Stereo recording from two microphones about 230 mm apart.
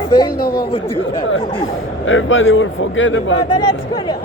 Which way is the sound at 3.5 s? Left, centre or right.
Centre.